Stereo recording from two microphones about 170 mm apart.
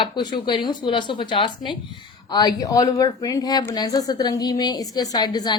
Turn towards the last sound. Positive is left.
turn(degrees=25)  # may be behind; listen again after turning